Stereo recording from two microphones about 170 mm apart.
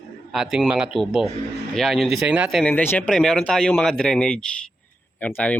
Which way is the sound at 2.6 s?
10° left (ahead or behind).